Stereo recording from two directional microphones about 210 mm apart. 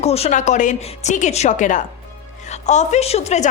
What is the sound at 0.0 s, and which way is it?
A woman's voice, 30° left (ahead or behind).